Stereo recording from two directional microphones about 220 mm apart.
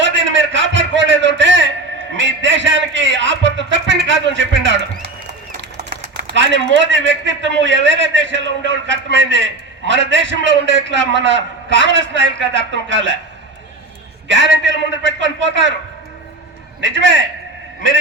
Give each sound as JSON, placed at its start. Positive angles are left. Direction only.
{"t": 0.0, "sound": "a sound", "side_deg": -55}
{"t": 2.1, "sound": "music", "side_deg": -55}
{"t": 6.2, "sound": "a man's voice", "side_deg": -55}
{"t": 14.3, "sound": "a man's voice", "side_deg": -55}
{"t": 16.8, "sound": "a man's voice", "side_deg": -55}